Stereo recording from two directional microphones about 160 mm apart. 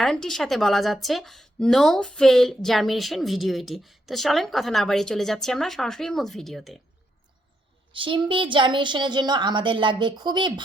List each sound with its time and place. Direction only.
0.0 s speech: 5° left (ahead or behind)
7.9 s a woman's voice: 30° right (ahead or behind)